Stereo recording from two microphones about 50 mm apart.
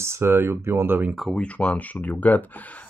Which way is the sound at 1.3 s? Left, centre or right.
Left.